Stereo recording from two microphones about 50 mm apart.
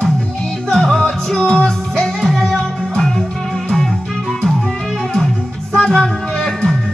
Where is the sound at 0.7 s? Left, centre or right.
Centre.